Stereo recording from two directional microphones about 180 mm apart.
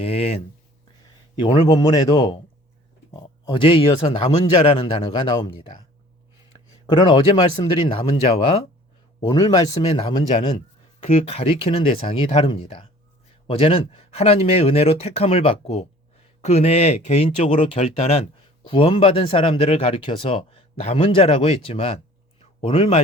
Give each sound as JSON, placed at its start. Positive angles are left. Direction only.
{"t": 0.0, "sound": "speech", "side_deg": 35}
{"t": 6.8, "sound": "speech", "side_deg": 25}